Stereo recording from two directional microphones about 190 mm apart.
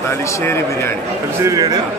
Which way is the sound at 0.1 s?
15° left (ahead or behind).